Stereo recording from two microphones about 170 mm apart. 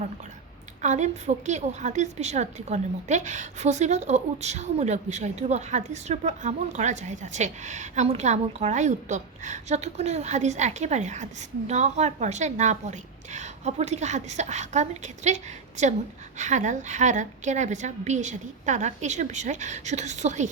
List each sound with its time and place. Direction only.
0.8 s a woman's voice: 45° right (ahead or behind)